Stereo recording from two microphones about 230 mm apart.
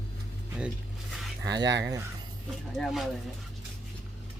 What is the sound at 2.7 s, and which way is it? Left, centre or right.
Speech, centre.